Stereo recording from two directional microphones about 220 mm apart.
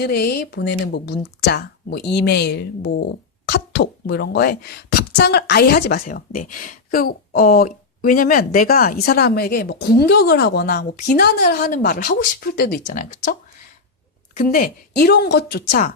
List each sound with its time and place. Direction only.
0.0 s speech: 45° left (ahead or behind)
14.3 s speech: 40° left (ahead or behind)